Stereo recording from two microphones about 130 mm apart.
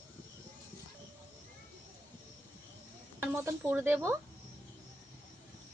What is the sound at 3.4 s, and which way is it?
Speech, 20° right (ahead or behind).